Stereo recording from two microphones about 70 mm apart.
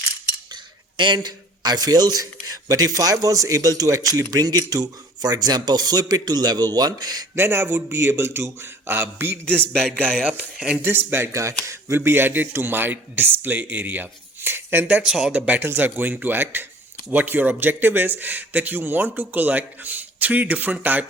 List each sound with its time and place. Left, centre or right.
1.0 s a man's voice: right
7.3 s speech: right
10.2 s speech: centre
10.8 s speech: right
11.3 s speech: right
11.9 s speech: right
14.8 s speech: centre